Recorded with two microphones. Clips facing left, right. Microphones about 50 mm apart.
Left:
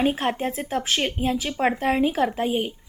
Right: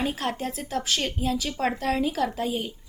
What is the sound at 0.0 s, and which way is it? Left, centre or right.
A woman's voice, left.